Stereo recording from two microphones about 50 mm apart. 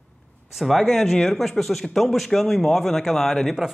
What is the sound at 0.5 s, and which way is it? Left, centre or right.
Speech, centre.